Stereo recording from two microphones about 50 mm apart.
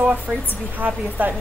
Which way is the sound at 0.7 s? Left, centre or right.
Right.